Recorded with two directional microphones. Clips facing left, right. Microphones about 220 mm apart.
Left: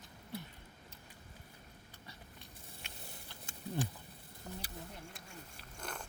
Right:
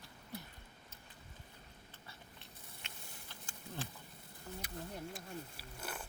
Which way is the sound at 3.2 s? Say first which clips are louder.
Left 7 dB; 15° left (ahead or behind).